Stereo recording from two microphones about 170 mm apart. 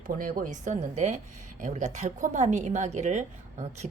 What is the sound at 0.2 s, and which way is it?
A woman's voice, 55° right (ahead or behind).